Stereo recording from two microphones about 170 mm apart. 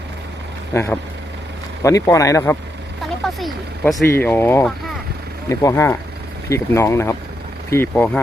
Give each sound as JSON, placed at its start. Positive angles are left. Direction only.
{"t": 0.7, "sound": "speech", "side_deg": 10}
{"t": 3.0, "sound": "a sound", "side_deg": 0}
{"t": 3.9, "sound": "speech", "side_deg": 15}